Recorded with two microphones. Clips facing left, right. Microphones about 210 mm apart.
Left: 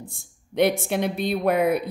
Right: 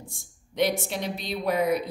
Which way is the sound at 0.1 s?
55° left (ahead or behind).